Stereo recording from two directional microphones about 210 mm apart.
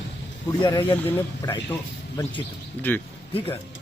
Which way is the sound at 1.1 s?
10° left (ahead or behind).